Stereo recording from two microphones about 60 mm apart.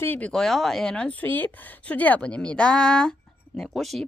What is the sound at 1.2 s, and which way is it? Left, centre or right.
Speech, left.